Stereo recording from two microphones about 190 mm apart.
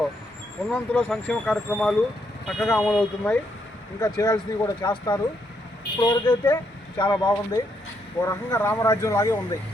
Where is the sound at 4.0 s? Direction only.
20° left (ahead or behind).